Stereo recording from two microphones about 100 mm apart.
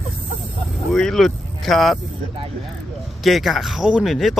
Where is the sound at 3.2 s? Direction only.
Centre (ahead or behind).